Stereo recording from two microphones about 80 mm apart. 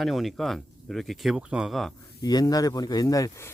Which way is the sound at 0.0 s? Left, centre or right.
Centre.